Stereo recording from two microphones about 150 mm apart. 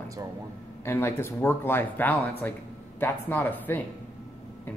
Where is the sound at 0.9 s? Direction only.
15° left (ahead or behind).